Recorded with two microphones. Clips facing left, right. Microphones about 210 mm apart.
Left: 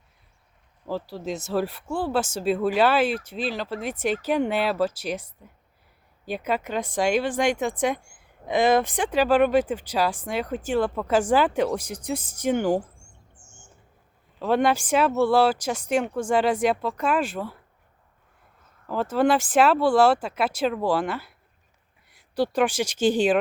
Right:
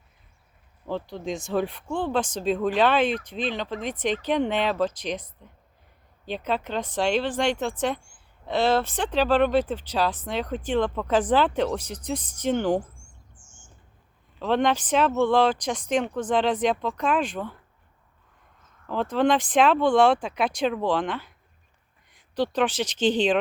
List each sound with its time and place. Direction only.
0.9 s speech: 5° left (ahead or behind)
13.3 s bird: 65° left (ahead or behind)
14.3 s speech: 10° left (ahead or behind)
18.9 s speech: 5° left (ahead or behind)